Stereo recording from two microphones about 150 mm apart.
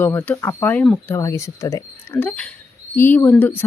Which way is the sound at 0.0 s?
15° left (ahead or behind).